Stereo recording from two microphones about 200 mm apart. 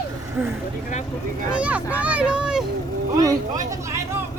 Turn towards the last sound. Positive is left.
turn(degrees=-15)  # may be behind; listen again after turning